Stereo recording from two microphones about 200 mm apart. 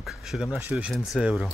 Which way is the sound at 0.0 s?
Centre (ahead or behind).